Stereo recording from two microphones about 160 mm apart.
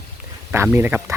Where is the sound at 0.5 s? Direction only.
15° right (ahead or behind).